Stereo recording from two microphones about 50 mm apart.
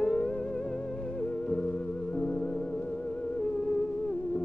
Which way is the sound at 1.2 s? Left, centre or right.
Centre.